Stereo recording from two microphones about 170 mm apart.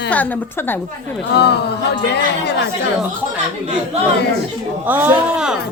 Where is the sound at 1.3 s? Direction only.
80° left.